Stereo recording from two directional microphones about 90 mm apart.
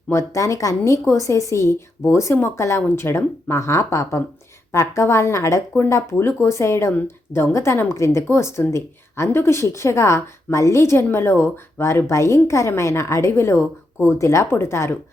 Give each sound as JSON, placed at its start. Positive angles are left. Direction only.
{"t": 0.1, "sound": "a woman's voice", "side_deg": 35}